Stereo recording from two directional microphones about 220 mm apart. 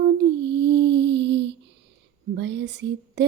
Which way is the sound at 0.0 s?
50° right (ahead or behind).